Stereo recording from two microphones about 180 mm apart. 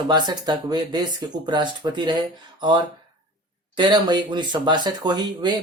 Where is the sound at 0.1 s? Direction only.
25° right (ahead or behind).